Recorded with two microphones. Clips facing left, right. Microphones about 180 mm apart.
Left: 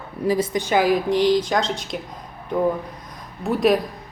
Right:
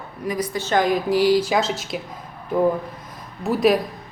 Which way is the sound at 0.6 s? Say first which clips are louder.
Right 1 dB; 5° left (ahead or behind).